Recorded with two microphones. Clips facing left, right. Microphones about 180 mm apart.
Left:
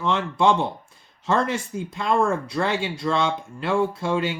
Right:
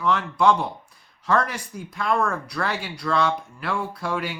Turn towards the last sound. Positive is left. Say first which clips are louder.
# left 4 dB
turn(degrees=25)  # may be behind; listen again after turning